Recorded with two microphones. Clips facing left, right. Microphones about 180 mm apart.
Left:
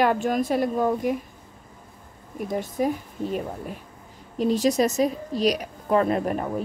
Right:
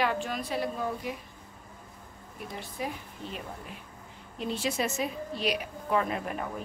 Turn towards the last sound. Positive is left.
turn(degrees=40)  # may be behind; listen again after turning